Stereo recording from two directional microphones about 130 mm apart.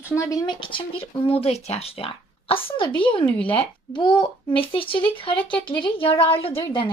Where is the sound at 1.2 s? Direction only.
50° left (ahead or behind).